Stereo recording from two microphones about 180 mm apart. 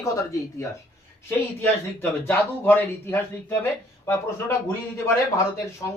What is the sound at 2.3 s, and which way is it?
Speech, 15° left (ahead or behind).